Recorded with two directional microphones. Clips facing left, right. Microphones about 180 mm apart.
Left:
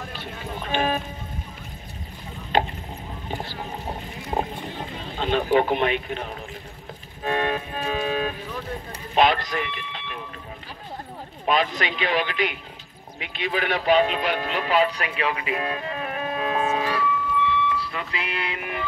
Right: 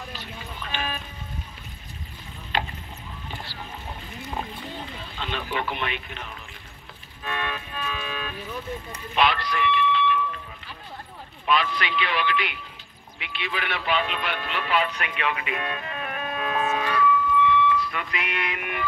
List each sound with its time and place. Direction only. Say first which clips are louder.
0.1 s clip-clop: left 5 dB; 55° left (ahead or behind)
3.3 s boat: left 7 dB; 45° left (ahead or behind)
5.0 s a sound: left 11 dB; 45° left (ahead or behind)
7.2 s music: left 7 dB; 40° left (ahead or behind)
9.1 s a sound: left 3 dB; 45° left (ahead or behind)
11.4 s speech: left 2 dB; 40° left (ahead or behind)